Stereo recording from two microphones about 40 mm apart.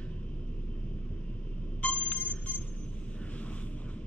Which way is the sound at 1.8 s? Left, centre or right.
Left.